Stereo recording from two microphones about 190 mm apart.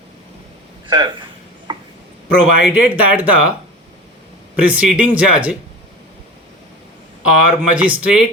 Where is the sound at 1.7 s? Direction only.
25° right (ahead or behind).